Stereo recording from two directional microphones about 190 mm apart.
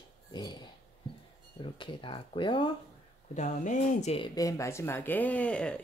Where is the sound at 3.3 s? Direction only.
40° left (ahead or behind).